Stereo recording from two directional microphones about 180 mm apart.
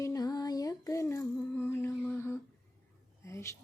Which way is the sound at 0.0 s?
20° left (ahead or behind).